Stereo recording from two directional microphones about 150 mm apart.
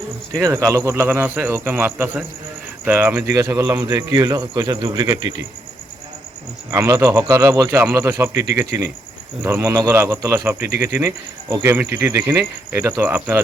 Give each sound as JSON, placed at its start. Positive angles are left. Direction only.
{"t": 0.3, "sound": "speech", "side_deg": -20}
{"t": 6.7, "sound": "speech", "side_deg": -20}
{"t": 11.7, "sound": "speech", "side_deg": -10}